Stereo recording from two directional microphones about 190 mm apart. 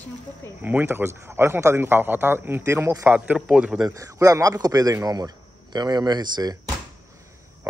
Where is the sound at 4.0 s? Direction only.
15° right (ahead or behind).